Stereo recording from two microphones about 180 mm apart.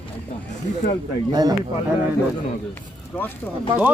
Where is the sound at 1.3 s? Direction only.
20° right (ahead or behind).